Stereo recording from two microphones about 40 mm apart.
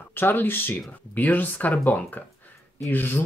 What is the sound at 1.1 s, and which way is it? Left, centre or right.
Speech, left.